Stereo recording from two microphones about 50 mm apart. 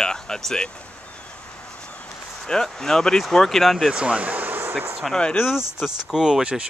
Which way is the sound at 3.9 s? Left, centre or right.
Right.